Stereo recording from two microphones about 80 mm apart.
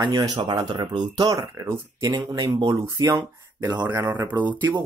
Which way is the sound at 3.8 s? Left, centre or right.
Right.